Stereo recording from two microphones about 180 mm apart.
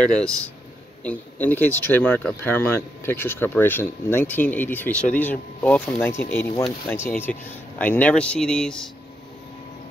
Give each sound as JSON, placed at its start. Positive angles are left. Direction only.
{"t": 0.0, "sound": "speech", "side_deg": 5}